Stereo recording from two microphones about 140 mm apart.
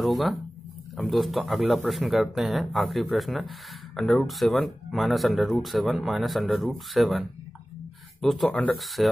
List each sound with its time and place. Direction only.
0.0 s speech: centre (ahead or behind)
8.7 s speech: centre (ahead or behind)